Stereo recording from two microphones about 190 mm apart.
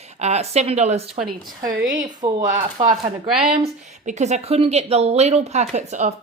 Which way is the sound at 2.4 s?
40° right (ahead or behind).